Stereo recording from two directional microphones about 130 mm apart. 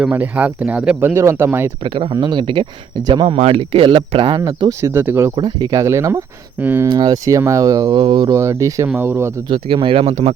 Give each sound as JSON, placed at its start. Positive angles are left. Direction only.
{"t": 0.0, "sound": "speech", "side_deg": -15}
{"t": 1.8, "sound": "speech", "side_deg": -40}
{"t": 3.3, "sound": "speech", "side_deg": -50}
{"t": 4.4, "sound": "speech", "side_deg": -30}
{"t": 5.3, "sound": "speech", "side_deg": -35}
{"t": 6.8, "sound": "speech", "side_deg": -30}
{"t": 7.9, "sound": "speech", "side_deg": -40}
{"t": 8.3, "sound": "speech", "side_deg": -25}
{"t": 9.5, "sound": "speech", "side_deg": -40}